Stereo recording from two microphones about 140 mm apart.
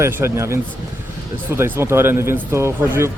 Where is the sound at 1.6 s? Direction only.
20° right (ahead or behind).